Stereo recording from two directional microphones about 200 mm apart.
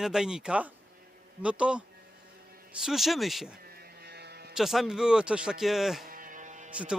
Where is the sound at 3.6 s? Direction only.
50° right (ahead or behind).